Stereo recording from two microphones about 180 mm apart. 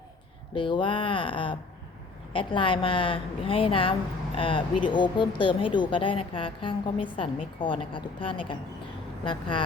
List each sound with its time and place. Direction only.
0.5 s speech: 25° left (ahead or behind)